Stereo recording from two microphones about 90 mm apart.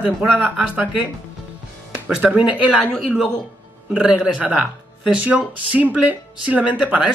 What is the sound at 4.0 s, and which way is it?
Speech, 10° right (ahead or behind).